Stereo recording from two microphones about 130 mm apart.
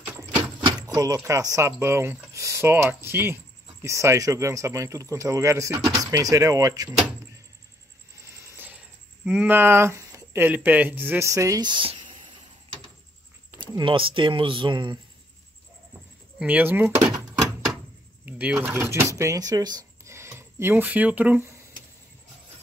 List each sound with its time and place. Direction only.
0.8 s speech: 30° right (ahead or behind)
9.2 s speech: 10° right (ahead or behind); by 12.0 s 40° right (ahead or behind)
13.7 s speech: 40° right (ahead or behind)
16.3 s speech: 15° right (ahead or behind)
18.2 s speech: 15° right (ahead or behind)